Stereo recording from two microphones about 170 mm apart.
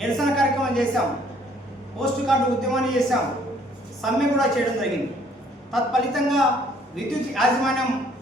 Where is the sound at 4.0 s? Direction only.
Centre (ahead or behind).